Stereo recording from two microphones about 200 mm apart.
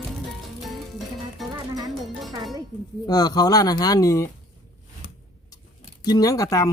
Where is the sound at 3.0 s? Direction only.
20° left (ahead or behind).